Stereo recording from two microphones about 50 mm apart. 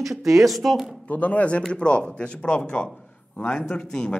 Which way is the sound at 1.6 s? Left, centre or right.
Centre.